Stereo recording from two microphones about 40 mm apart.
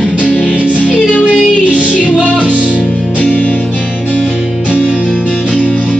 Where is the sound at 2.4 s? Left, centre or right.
Right.